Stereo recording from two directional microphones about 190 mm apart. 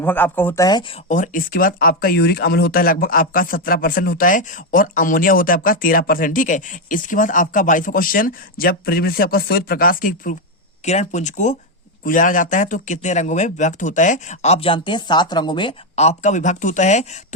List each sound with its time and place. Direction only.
0.0 s speech: 10° left (ahead or behind)
16.0 s speech: 35° left (ahead or behind)